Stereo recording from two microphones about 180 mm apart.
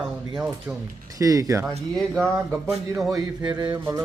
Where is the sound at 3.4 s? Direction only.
25° right (ahead or behind).